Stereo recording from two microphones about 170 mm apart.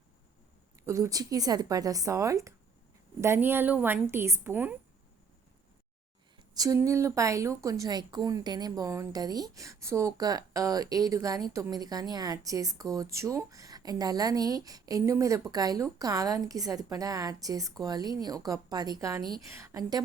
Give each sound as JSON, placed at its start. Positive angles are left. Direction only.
{"t": 0.9, "sound": "a woman's voice", "side_deg": -15}
{"t": 6.5, "sound": "a woman's voice", "side_deg": -20}